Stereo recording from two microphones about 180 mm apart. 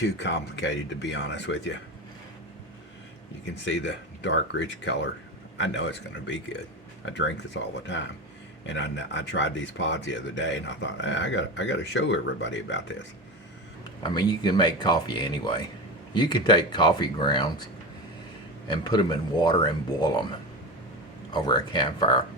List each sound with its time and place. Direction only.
0.0 s speech: 75° left (ahead or behind); by 1.8 s 90° left
3.4 s a man's voice: 90° left
7.0 s a man's voice: 90° left
14.0 s speech: 25° left (ahead or behind)
18.7 s speech: 25° left (ahead or behind)
21.3 s speech: 25° left (ahead or behind)